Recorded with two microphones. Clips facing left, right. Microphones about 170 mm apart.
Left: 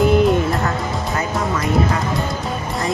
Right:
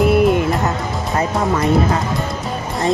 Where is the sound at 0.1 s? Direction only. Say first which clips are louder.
Right 1 dB; 10° right (ahead or behind).